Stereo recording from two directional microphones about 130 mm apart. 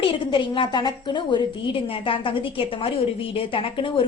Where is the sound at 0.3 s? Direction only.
40° left (ahead or behind).